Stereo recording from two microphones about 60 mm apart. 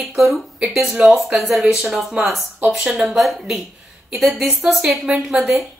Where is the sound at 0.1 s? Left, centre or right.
Centre.